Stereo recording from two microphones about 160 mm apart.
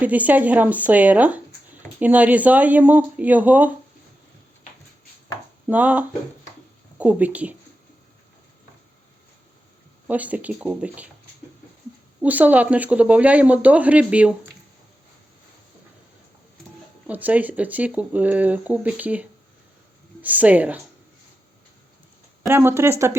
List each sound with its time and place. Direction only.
0.0 s speech: 10° right (ahead or behind)
5.6 s speech: 10° right (ahead or behind)
10.1 s speech: 10° right (ahead or behind)
12.2 s speech: 10° right (ahead or behind)
17.1 s speech: 10° right (ahead or behind)
22.4 s speech: 15° right (ahead or behind)